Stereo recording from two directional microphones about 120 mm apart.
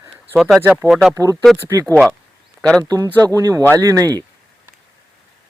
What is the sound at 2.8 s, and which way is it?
Speech, 30° right (ahead or behind).